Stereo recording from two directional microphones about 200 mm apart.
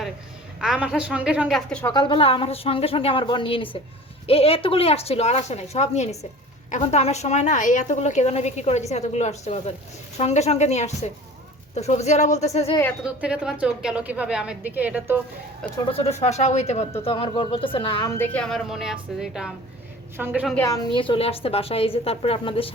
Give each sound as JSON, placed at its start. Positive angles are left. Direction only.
{"t": 0.6, "sound": "a woman's voice", "side_deg": -5}
{"t": 1.8, "sound": "a woman's voice", "side_deg": 20}
{"t": 13.0, "sound": "a woman's voice", "side_deg": -5}
{"t": 15.9, "sound": "speech", "side_deg": 30}
{"t": 18.2, "sound": "a woman's voice", "side_deg": 5}
{"t": 20.9, "sound": "speech", "side_deg": 25}